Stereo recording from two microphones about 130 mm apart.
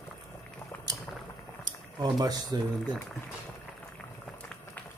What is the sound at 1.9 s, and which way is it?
Speech, 30° right (ahead or behind).